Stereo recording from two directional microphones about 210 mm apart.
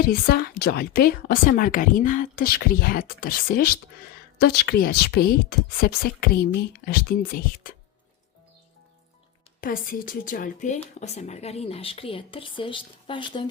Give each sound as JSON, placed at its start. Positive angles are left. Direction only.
{"t": 0.0, "sound": "a woman's voice", "side_deg": 45}
{"t": 9.6, "sound": "a woman's voice", "side_deg": 45}